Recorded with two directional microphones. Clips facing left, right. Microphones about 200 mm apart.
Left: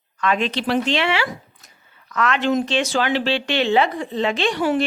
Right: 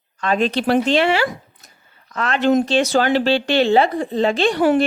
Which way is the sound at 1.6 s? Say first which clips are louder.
Left 1 dB; 30° right (ahead or behind).